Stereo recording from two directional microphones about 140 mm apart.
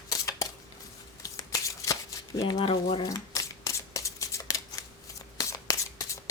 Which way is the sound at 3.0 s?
25° left (ahead or behind).